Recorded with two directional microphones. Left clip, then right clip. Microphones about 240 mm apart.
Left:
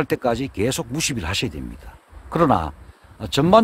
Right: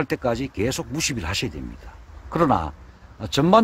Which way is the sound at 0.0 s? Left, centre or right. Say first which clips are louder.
Left 3 dB; centre.